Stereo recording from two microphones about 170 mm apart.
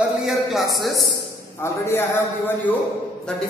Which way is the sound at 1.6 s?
15° left (ahead or behind).